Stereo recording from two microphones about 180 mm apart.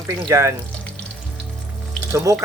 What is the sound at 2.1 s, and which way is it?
Speech, 15° right (ahead or behind).